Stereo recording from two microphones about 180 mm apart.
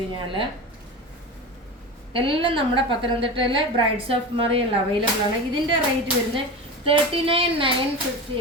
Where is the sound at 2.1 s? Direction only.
30° right (ahead or behind).